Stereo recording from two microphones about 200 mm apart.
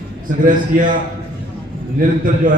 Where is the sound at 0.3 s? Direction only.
40° right (ahead or behind).